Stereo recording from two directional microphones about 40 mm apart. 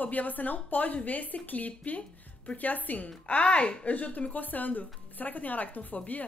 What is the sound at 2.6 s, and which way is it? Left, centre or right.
Speech, left.